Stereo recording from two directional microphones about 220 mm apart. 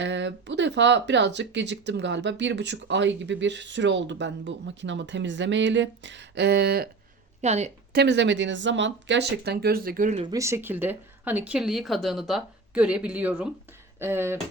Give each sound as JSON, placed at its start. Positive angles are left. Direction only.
{"t": 0.0, "sound": "speech", "side_deg": -55}
{"t": 7.4, "sound": "a woman's voice", "side_deg": -30}
{"t": 7.9, "sound": "speech", "side_deg": -50}
{"t": 10.2, "sound": "speech", "side_deg": -15}